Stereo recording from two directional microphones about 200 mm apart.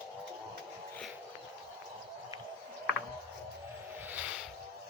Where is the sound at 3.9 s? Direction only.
10° right (ahead or behind).